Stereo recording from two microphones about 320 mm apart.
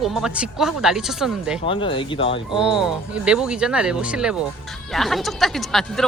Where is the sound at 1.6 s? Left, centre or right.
Centre.